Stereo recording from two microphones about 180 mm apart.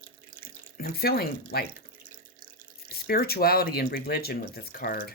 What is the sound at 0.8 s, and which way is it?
Speech, 60° left (ahead or behind).